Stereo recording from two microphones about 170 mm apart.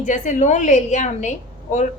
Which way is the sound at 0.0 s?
45° left (ahead or behind).